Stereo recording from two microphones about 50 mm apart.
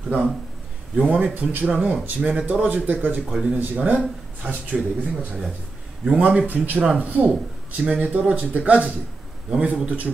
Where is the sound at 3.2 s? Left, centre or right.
Right.